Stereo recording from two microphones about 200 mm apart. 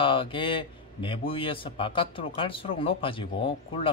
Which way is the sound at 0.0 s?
25° left (ahead or behind).